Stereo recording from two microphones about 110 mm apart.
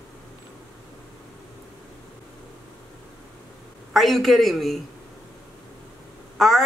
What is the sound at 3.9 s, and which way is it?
Speech, centre (ahead or behind).